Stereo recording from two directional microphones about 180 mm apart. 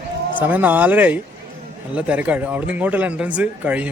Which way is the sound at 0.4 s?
10° right (ahead or behind).